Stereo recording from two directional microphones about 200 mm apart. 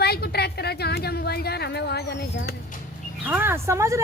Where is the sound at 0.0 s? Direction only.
55° left (ahead or behind).